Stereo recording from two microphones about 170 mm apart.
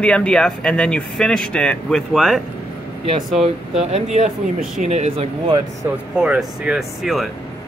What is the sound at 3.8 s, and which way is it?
Speech, 40° right (ahead or behind).